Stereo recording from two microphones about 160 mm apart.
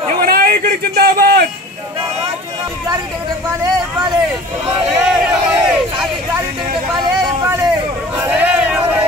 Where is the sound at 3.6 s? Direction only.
25° right (ahead or behind).